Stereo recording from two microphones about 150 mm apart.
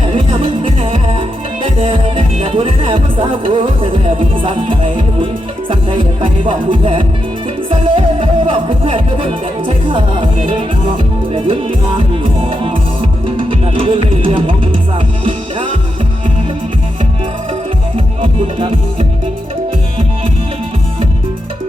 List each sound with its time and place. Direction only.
0.3 s music: 35° right (ahead or behind)
17.9 s music: 35° right (ahead or behind)